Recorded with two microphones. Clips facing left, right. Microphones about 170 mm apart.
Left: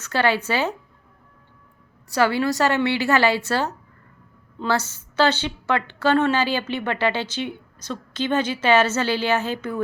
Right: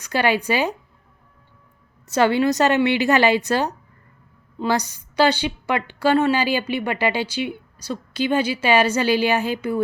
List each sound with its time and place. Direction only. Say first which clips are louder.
0.0 s a woman's voice: right 1 dB; 15° right (ahead or behind)
2.0 s a woman's voice: right 3 dB; 20° right (ahead or behind)